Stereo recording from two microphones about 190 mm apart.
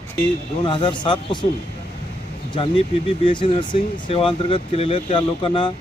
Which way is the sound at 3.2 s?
25° left (ahead or behind).